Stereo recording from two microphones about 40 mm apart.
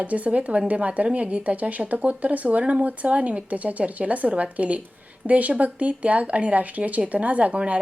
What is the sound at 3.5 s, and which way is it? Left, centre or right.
Speech, right.